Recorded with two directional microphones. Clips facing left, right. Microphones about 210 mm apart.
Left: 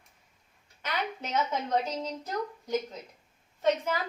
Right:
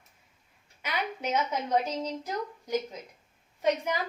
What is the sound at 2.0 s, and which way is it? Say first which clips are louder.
A woman's voice: even; 10° right (ahead or behind).